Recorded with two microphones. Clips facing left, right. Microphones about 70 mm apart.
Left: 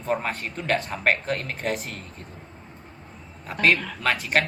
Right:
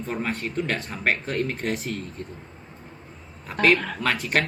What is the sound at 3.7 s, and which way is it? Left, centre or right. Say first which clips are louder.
Speech: right 4 dB; right.